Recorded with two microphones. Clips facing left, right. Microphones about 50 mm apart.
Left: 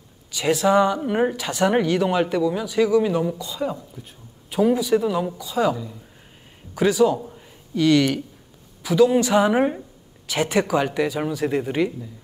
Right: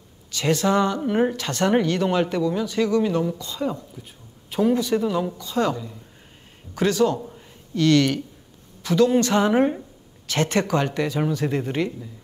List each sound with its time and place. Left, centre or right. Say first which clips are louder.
0.3 s a woman's voice: left 2 dB; centre